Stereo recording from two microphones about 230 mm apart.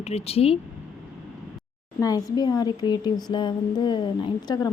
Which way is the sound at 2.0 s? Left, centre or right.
Centre.